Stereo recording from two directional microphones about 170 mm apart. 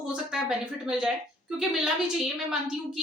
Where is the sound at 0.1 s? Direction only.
5° right (ahead or behind).